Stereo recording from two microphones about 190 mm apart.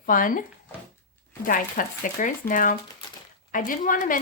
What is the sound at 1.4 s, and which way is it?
A woman's voice, 45° left (ahead or behind).